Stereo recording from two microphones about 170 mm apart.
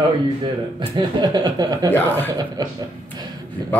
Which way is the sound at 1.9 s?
10° left (ahead or behind).